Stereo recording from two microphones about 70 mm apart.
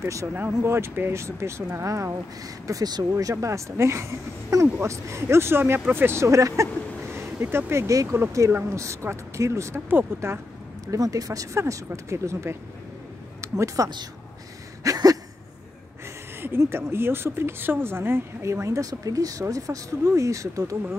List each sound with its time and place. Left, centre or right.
0.0 s speech: right
9.8 s speech: right
10.9 s speech: right
14.8 s a sound: right
16.3 s speech: right